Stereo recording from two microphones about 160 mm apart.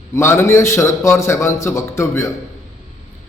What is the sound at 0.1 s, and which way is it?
A man's voice, 15° left (ahead or behind).